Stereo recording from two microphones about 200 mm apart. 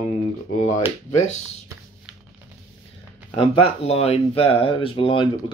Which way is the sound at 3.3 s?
30° left (ahead or behind).